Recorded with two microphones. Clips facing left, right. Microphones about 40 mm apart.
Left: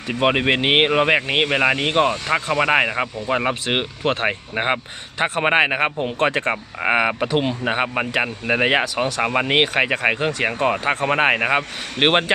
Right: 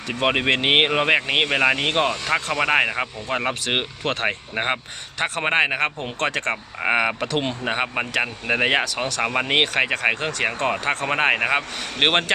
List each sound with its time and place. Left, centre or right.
0.1 s speech: centre
2.2 s speech: left
2.6 s speech: centre